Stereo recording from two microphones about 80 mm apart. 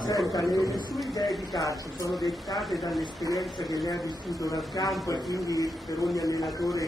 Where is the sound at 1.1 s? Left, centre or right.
Left.